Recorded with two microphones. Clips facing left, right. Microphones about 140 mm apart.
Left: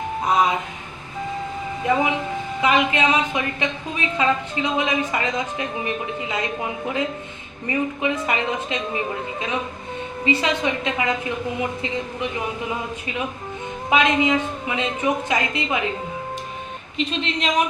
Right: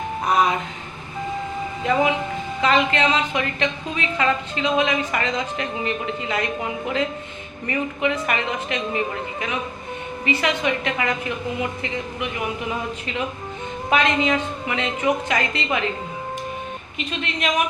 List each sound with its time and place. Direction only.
0.3 s a sound: 20° left (ahead or behind)
1.8 s a woman's voice: 20° left (ahead or behind)
13.9 s a woman's voice: 15° left (ahead or behind)